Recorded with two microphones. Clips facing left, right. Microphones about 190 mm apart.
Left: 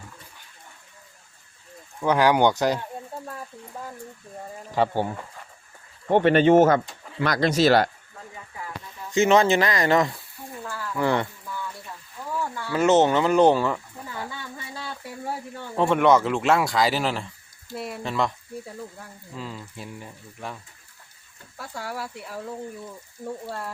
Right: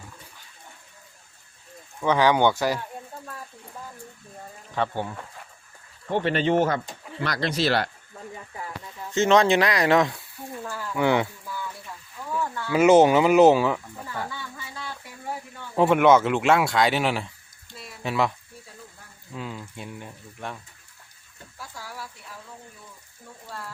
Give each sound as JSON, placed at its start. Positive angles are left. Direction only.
{"t": 2.0, "sound": "speech", "side_deg": 10}
{"t": 3.1, "sound": "a sound", "side_deg": 30}
{"t": 4.7, "sound": "speech", "side_deg": 35}
{"t": 6.1, "sound": "speech", "side_deg": 55}
{"t": 9.1, "sound": "speech", "side_deg": 5}
{"t": 10.6, "sound": "a sound", "side_deg": -15}
{"t": 10.9, "sound": "speech", "side_deg": 0}
{"t": 12.7, "sound": "speech", "side_deg": -10}
{"t": 15.8, "sound": "speech", "side_deg": -5}
{"t": 17.7, "sound": "a sound", "side_deg": 60}
{"t": 18.0, "sound": "speech", "side_deg": -5}
{"t": 19.4, "sound": "speech", "side_deg": 0}
{"t": 21.6, "sound": "speech", "side_deg": 65}
{"t": 23.2, "sound": "speech", "side_deg": 50}